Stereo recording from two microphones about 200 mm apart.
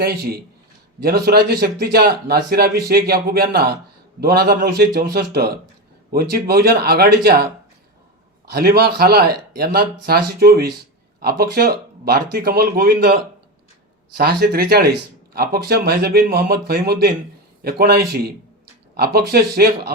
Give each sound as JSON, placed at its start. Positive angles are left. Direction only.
{"t": 0.0, "sound": "a man's voice", "side_deg": -50}
{"t": 8.4, "sound": "a man's voice", "side_deg": -50}
{"t": 14.2, "sound": "a man's voice", "side_deg": -50}